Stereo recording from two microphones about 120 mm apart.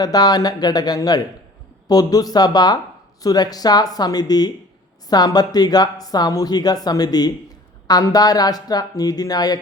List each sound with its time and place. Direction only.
0.0 s speech: 30° left (ahead or behind)